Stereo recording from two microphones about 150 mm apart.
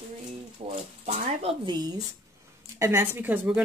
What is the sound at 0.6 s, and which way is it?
Speech, 45° right (ahead or behind).